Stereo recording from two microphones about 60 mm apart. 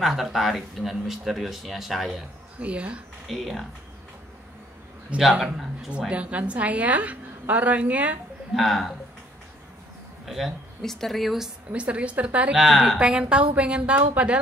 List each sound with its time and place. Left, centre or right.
0.0 s speech: centre
2.6 s a woman's voice: right
3.3 s speech: centre
5.4 s speech: centre
5.9 s a woman's voice: centre
8.5 s speech: centre
10.2 s speech: centre
11.7 s a woman's voice: centre
12.5 s speech: centre
13.0 s a woman's voice: centre